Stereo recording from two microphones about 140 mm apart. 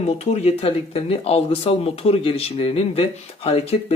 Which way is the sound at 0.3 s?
45° left (ahead or behind).